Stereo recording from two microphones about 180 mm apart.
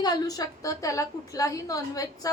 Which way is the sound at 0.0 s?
20° left (ahead or behind).